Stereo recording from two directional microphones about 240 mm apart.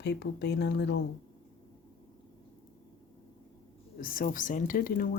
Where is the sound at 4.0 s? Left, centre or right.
Left.